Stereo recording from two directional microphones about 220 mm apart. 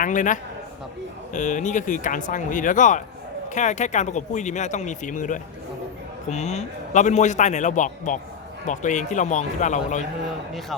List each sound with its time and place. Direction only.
0.0 s a man's voice: 35° left (ahead or behind)